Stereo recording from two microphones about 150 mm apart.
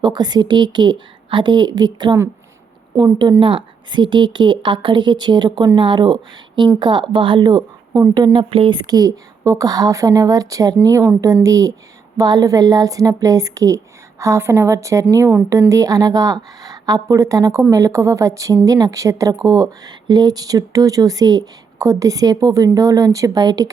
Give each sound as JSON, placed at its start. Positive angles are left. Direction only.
{"t": 0.0, "sound": "a woman's voice", "side_deg": -25}